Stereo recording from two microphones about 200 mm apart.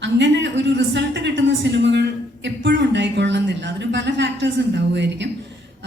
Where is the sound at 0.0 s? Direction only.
65° right (ahead or behind).